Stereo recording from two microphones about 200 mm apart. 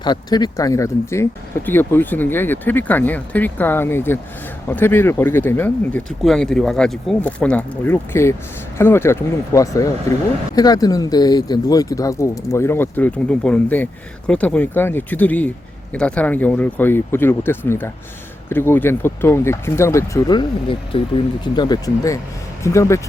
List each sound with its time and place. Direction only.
0.0 s speech: 20° left (ahead or behind)